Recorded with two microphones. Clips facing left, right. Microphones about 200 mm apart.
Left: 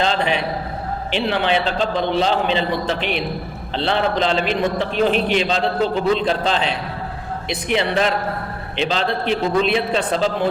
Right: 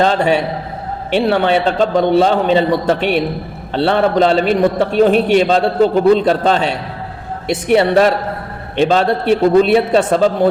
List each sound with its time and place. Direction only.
0.0 s a man's voice: 45° right (ahead or behind)